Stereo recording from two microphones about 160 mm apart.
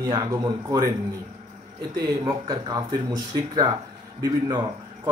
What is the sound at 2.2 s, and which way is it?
Speech, 30° right (ahead or behind).